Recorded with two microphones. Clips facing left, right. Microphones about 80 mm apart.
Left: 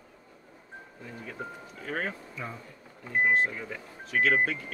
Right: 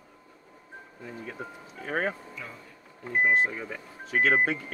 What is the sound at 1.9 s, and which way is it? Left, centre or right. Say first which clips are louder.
Speech: right 4 dB; right.